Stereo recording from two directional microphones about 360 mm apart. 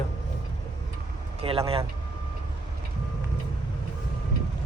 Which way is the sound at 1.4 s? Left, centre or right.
Centre.